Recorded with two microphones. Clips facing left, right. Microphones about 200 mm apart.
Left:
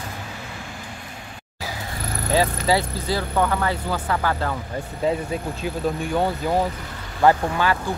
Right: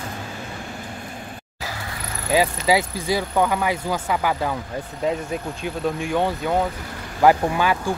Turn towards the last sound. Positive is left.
turn(degrees=-15)  # may be behind; listen again after turning